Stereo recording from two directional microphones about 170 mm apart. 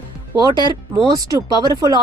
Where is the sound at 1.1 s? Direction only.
20° right (ahead or behind).